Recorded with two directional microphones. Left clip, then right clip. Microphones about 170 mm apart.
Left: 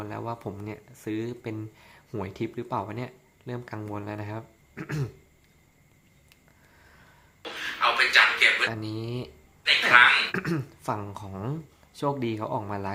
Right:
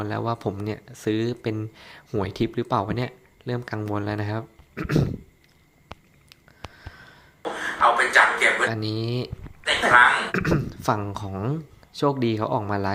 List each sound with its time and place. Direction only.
0.0 s speech: 25° right (ahead or behind)
4.7 s a sound: 10° right (ahead or behind)
6.7 s a sound: 20° right (ahead or behind)
7.4 s a sound: 10° left (ahead or behind)
8.7 s speech: 20° right (ahead or behind)
9.6 s speech: 10° left (ahead or behind)
10.3 s speech: 10° right (ahead or behind)
10.7 s speech: 20° right (ahead or behind)
11.9 s speech: 20° right (ahead or behind)